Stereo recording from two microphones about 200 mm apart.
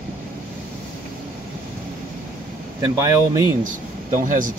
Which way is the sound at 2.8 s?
15° right (ahead or behind).